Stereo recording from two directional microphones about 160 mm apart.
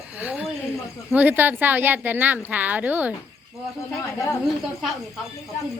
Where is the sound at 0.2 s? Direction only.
10° right (ahead or behind).